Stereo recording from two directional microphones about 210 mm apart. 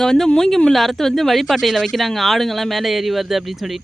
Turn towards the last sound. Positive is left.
turn(degrees=0)  # may be behind; listen again after turning